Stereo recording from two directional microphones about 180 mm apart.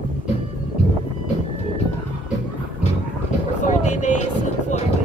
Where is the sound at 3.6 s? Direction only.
40° left (ahead or behind).